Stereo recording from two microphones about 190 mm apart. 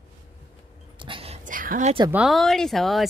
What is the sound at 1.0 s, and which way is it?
Whispering, 30° right (ahead or behind).